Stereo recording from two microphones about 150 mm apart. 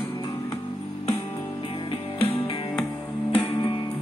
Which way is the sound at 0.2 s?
30° left (ahead or behind).